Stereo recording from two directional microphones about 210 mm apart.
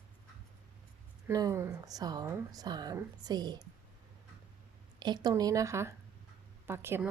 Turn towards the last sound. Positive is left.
turn(degrees=-10)  # may be behind; listen again after turning